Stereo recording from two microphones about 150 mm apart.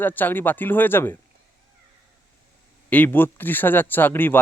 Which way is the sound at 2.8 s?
10° left (ahead or behind).